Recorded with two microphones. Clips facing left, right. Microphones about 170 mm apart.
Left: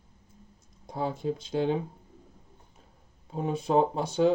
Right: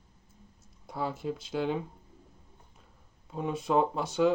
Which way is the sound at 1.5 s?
30° left (ahead or behind).